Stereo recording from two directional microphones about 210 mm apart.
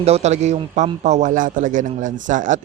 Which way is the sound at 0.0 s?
30° right (ahead or behind).